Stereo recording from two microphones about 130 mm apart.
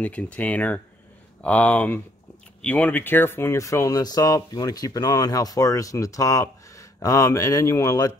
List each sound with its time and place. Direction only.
0.0 s speech: 10° left (ahead or behind); by 8.1 s 25° left (ahead or behind)